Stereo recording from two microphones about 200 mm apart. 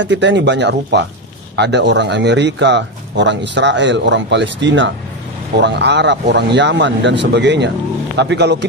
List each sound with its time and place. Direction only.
0.0 s speech: 65° right (ahead or behind)